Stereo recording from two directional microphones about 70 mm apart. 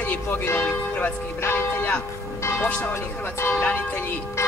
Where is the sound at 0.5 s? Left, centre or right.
Left.